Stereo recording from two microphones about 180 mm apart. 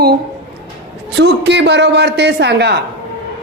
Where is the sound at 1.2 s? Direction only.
75° right (ahead or behind).